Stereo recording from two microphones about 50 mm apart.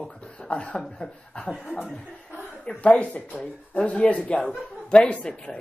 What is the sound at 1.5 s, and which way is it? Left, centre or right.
Speech, right.